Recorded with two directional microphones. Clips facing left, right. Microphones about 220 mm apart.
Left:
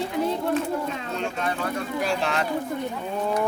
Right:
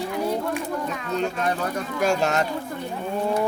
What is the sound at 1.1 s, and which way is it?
Bird, 40° right (ahead or behind).